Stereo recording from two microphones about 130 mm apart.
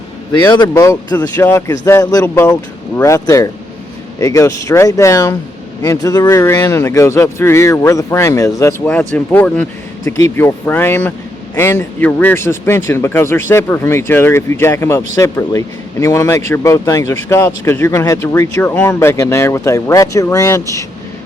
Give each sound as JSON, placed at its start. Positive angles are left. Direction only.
{"t": 0.4, "sound": "speech", "side_deg": 30}
{"t": 2.3, "sound": "speech", "side_deg": 15}
{"t": 8.8, "sound": "speech", "side_deg": 10}
{"t": 10.1, "sound": "speech", "side_deg": 25}